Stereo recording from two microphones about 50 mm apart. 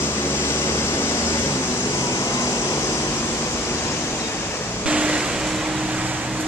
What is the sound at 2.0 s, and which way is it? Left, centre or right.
Vehicle, left.